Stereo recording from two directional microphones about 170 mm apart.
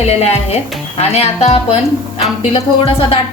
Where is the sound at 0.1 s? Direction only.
35° left (ahead or behind).